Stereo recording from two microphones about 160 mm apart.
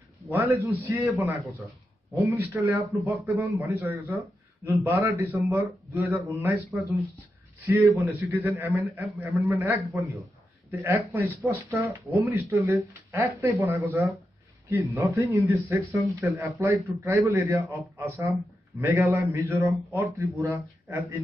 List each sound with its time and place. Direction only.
0.3 s a man's voice: 10° right (ahead or behind)
2.1 s a man's voice: 15° right (ahead or behind)
7.6 s a man's voice: 15° right (ahead or behind)